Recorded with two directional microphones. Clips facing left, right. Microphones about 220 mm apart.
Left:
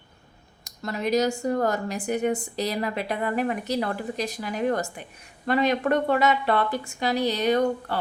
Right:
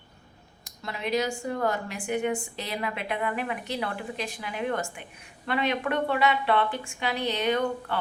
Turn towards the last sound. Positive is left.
turn(degrees=40)  # may be behind; listen again after turning